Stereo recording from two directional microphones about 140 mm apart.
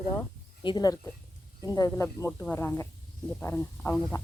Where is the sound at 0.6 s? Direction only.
30° left (ahead or behind).